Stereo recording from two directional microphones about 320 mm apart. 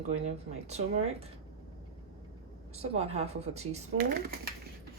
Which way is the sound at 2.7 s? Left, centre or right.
Centre.